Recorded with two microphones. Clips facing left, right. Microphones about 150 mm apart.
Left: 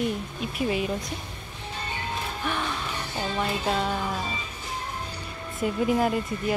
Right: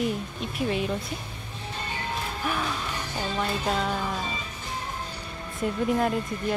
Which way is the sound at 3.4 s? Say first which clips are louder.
Left 1 dB; centre (ahead or behind).